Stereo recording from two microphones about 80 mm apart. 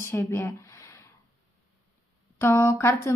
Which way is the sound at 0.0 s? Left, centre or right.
Left.